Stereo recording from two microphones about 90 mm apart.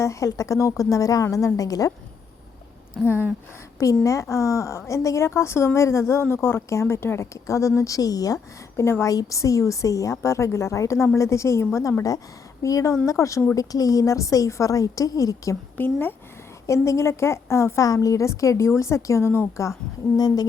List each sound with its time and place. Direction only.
0.0 s a woman's voice: 35° left (ahead or behind)
3.0 s speech: 5° left (ahead or behind)
4.0 s a woman's voice: 35° left (ahead or behind)
15.8 s speech: 20° left (ahead or behind)
16.6 s a woman's voice: 35° left (ahead or behind)
20.1 s a sound: 45° left (ahead or behind)